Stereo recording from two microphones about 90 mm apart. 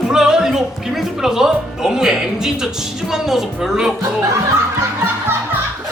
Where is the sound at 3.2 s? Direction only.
5° right (ahead or behind).